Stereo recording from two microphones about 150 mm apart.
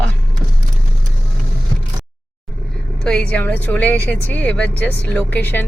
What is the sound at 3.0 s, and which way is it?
A woman's voice, 10° left (ahead or behind).